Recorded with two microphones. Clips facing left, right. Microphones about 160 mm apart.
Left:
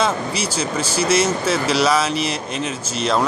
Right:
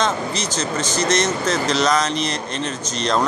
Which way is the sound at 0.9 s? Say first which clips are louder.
Left 2 dB; 10° left (ahead or behind).